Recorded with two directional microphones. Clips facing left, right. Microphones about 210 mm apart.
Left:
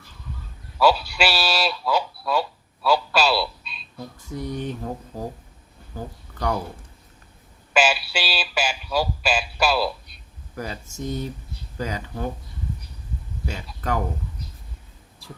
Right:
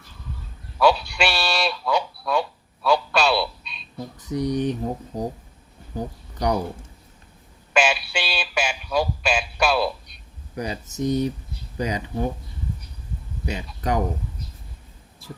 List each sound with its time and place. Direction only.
0.8 s speech: 5° left (ahead or behind)
4.3 s speech: 15° right (ahead or behind)
7.7 s speech: 5° left (ahead or behind)
10.5 s speech: 20° right (ahead or behind)
13.4 s speech: 15° right (ahead or behind)